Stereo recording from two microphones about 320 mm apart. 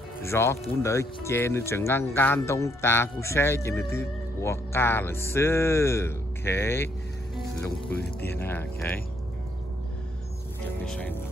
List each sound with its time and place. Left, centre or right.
0.2 s speech: centre
10.9 s speech: centre